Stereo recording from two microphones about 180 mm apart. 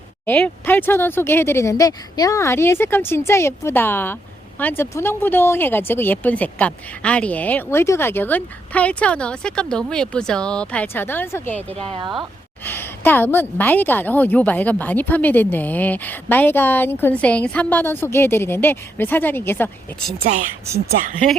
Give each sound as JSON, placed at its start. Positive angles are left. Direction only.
{"t": 0.3, "sound": "a woman's voice", "side_deg": 10}
{"t": 11.8, "sound": "speech", "side_deg": -25}
{"t": 12.6, "sound": "a woman's voice", "side_deg": 10}